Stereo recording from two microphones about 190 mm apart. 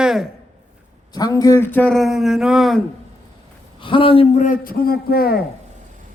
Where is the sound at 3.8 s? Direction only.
30° left (ahead or behind).